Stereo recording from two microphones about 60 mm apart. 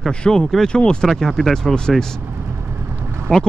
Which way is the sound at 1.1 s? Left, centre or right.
Centre.